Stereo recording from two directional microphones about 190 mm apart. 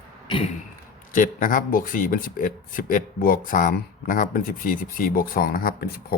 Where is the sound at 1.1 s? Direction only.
45° left (ahead or behind).